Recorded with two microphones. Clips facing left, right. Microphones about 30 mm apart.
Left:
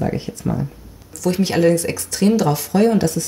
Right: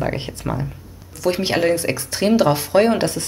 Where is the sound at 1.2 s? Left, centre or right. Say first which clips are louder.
Left 2 dB; right.